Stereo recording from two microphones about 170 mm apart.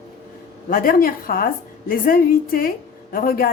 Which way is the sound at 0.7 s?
60° left (ahead or behind).